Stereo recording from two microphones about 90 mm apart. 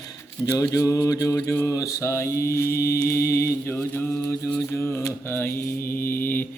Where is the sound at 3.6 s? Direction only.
20° left (ahead or behind).